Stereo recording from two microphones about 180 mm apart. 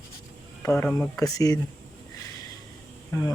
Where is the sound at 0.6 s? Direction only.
15° left (ahead or behind).